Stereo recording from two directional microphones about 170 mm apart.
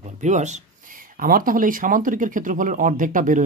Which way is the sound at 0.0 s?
45° right (ahead or behind).